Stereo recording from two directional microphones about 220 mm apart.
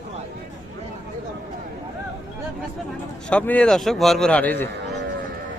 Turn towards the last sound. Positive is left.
turn(degrees=10)  # may be behind; listen again after turning